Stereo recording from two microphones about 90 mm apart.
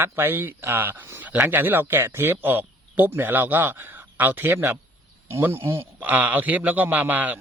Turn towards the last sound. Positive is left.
turn(degrees=-20)  # may be behind; listen again after turning